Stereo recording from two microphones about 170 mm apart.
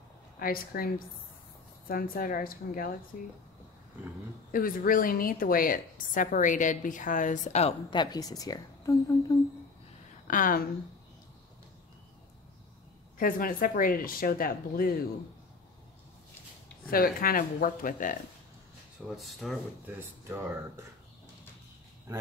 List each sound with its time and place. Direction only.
0.4 s a woman's voice: 60° left (ahead or behind)
4.5 s a woman's voice: 55° left (ahead or behind)
7.9 s a woman's voice: 25° left (ahead or behind)
10.2 s a woman's voice: 55° left (ahead or behind)
13.2 s speech: 55° left (ahead or behind)
16.9 s speech: 60° left (ahead or behind)
19.0 s speech: centre (ahead or behind)
20.2 s speech: 15° right (ahead or behind)